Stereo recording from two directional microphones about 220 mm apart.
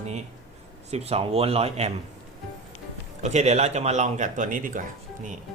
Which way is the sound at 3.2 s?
30° right (ahead or behind).